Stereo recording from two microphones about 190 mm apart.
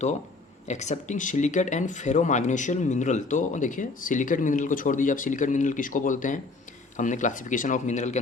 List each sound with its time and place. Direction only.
0.7 s speech: 40° left (ahead or behind)